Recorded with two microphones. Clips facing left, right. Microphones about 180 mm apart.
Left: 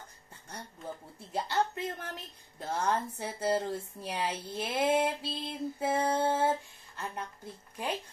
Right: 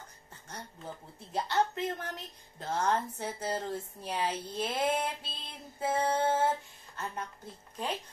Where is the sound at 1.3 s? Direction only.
10° left (ahead or behind).